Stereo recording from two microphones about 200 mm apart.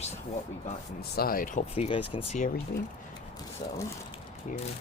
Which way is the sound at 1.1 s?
50° left (ahead or behind).